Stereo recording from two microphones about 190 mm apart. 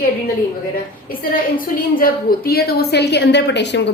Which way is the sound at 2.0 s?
55° left (ahead or behind).